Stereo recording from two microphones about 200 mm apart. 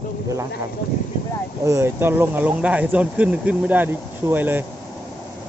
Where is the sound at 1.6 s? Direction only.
15° right (ahead or behind).